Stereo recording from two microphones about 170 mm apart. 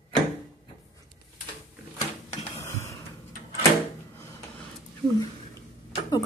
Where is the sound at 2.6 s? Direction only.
15° left (ahead or behind).